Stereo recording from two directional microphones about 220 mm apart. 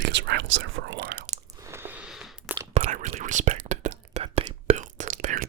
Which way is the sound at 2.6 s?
30° right (ahead or behind).